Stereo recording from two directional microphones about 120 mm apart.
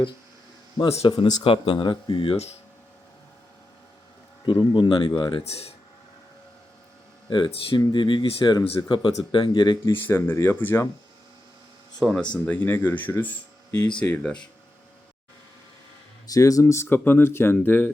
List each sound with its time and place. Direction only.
1.0 s speech: 45° left (ahead or behind)
4.4 s speech: 40° left (ahead or behind)
5.5 s speech: 55° left (ahead or behind)
7.3 s speech: 40° left (ahead or behind)
10.0 s speech: 20° left (ahead or behind)
11.9 s speech: 5° left (ahead or behind)
16.2 s speech: 30° left (ahead or behind)